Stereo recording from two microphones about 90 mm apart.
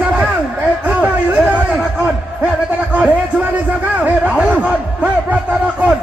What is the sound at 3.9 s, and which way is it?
Speech, 15° right (ahead or behind).